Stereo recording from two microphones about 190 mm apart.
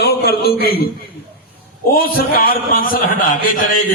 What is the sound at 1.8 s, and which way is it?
A man's voice, 50° left (ahead or behind).